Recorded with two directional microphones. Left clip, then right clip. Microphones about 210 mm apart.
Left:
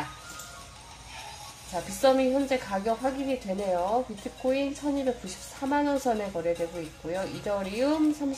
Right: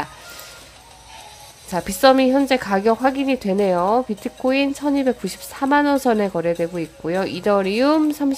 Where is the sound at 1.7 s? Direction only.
40° right (ahead or behind).